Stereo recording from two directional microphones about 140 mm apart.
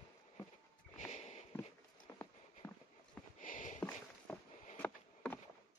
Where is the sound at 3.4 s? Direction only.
70° left (ahead or behind).